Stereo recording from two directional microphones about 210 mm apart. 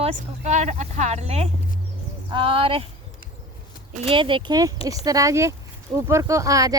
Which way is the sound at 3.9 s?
25° right (ahead or behind).